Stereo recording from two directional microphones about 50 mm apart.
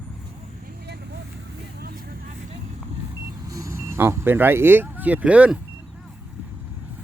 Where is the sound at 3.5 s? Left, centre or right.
Right.